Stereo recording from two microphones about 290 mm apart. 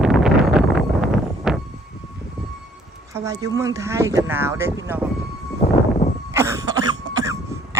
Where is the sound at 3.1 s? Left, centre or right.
Centre.